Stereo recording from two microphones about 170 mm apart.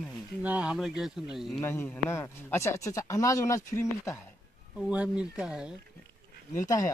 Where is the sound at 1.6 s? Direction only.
10° left (ahead or behind).